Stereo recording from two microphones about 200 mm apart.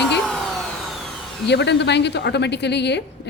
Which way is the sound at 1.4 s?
60° left (ahead or behind).